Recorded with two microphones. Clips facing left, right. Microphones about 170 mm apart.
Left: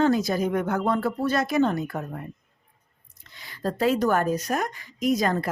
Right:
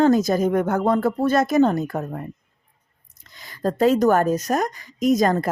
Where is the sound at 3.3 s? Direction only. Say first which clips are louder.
Right 5 dB; 45° right (ahead or behind).